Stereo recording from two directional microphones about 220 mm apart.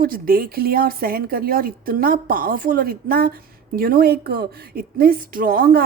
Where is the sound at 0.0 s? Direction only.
40° right (ahead or behind).